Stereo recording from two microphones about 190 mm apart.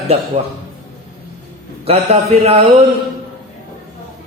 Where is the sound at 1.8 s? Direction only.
30° right (ahead or behind).